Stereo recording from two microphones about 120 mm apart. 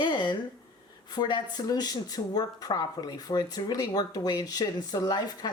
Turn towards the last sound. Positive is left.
turn(degrees=35)  # may be behind; listen again after turning